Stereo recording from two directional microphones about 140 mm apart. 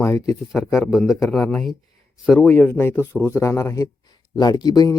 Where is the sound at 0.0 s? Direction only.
20° left (ahead or behind).